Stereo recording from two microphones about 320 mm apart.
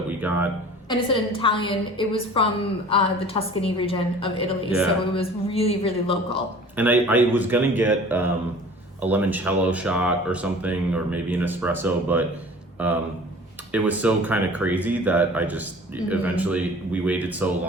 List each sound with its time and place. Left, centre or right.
0.2 s a sound: centre
0.9 s a woman's voice: centre
6.7 s speech: centre